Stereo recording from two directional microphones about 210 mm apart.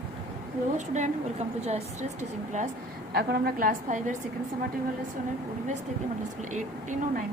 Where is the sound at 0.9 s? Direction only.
30° right (ahead or behind).